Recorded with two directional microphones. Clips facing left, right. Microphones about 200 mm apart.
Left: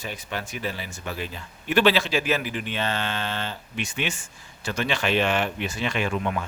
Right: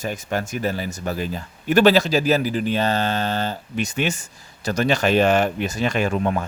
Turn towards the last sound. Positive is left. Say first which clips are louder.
# right 5 dB
turn(degrees=-40)  # may be behind; listen again after turning